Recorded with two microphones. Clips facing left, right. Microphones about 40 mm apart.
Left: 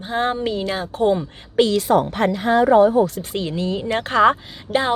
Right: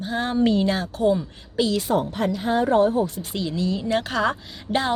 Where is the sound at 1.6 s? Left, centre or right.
Left.